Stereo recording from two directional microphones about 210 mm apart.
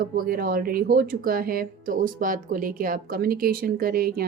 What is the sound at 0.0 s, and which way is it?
Speech, 45° right (ahead or behind).